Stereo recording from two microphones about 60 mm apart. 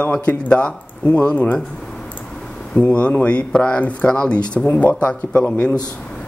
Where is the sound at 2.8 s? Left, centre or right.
Left.